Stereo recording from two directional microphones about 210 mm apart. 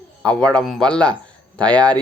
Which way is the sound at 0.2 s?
5° left (ahead or behind).